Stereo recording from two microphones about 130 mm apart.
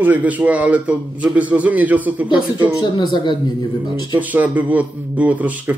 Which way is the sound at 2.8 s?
35° left (ahead or behind).